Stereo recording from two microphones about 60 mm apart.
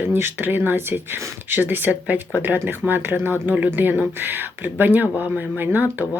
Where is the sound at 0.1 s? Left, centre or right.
Right.